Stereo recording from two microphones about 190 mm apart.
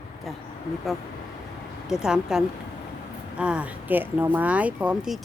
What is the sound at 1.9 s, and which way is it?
Speech, 5° right (ahead or behind).